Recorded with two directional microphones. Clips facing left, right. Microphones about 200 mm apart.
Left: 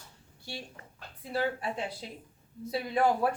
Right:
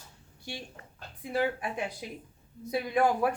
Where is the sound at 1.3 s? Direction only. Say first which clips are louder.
Right 2 dB; 15° right (ahead or behind).